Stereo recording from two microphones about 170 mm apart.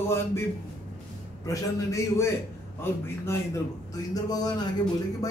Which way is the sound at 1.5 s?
15° left (ahead or behind).